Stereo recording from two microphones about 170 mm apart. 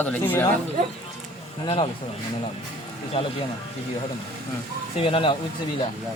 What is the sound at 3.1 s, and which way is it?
Speech, 35° left (ahead or behind).